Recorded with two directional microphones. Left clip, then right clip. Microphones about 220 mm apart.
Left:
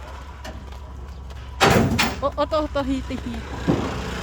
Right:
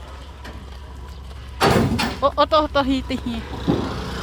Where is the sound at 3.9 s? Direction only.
40° right (ahead or behind).